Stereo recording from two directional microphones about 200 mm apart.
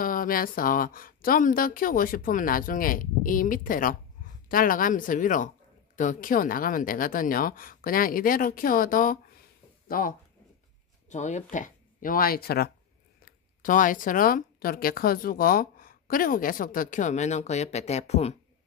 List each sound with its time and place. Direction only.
0.0 s speech: 45° left (ahead or behind)
13.2 s speech: 40° left (ahead or behind)